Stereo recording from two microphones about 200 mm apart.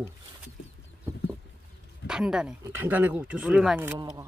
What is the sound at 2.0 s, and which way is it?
Speech, 5° right (ahead or behind).